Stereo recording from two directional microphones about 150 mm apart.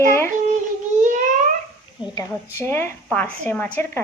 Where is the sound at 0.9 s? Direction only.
55° right (ahead or behind).